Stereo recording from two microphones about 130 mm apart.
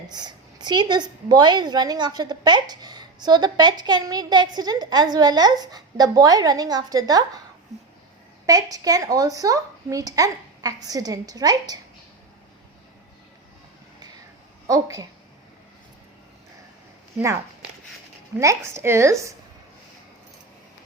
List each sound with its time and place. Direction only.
0.1 s a woman's voice: 35° right (ahead or behind)
8.4 s a woman's voice: 25° right (ahead or behind)
14.7 s a woman's voice: 25° right (ahead or behind)
17.2 s a woman's voice: 20° right (ahead or behind)